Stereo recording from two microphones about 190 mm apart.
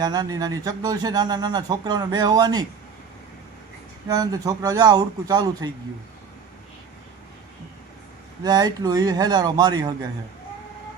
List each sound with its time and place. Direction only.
0.0 s speech: 20° right (ahead or behind)
4.1 s speech: 20° right (ahead or behind)
8.4 s speech: 20° right (ahead or behind)